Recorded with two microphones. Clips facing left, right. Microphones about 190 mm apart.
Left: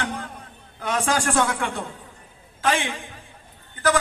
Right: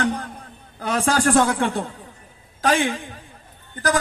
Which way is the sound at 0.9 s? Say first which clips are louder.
Right 4 dB; 35° right (ahead or behind).